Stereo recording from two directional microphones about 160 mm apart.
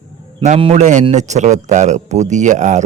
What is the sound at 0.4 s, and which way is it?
A man's voice, 45° right (ahead or behind).